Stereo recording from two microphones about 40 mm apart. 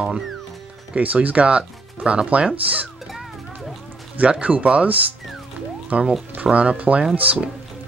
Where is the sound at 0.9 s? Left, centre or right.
Right.